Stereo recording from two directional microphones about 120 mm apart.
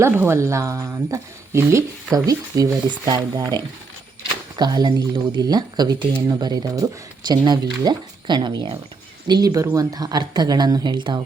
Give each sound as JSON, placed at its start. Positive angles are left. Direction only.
{"t": 0.0, "sound": "speech", "side_deg": -20}